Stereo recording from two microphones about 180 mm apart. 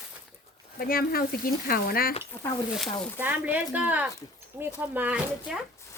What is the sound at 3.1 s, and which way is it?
Speech, 10° right (ahead or behind).